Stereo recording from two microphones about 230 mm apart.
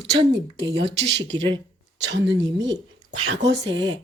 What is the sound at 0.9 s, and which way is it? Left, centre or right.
Speech, right.